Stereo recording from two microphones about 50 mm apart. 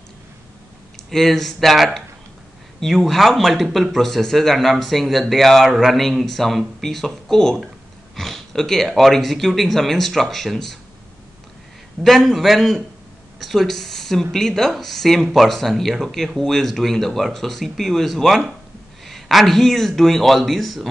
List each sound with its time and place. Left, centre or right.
1.1 s speech: centre
8.2 s a sound: centre
8.8 s speech: centre
12.0 s speech: centre